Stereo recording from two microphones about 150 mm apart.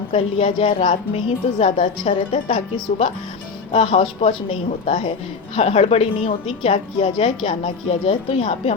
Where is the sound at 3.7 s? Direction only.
40° left (ahead or behind).